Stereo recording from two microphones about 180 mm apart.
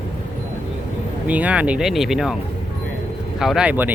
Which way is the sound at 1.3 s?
5° right (ahead or behind).